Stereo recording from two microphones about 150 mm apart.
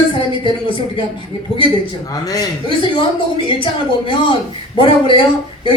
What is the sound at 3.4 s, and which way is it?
Speech, 35° left (ahead or behind).